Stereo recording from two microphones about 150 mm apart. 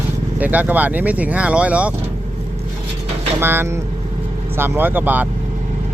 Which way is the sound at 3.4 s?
15° right (ahead or behind).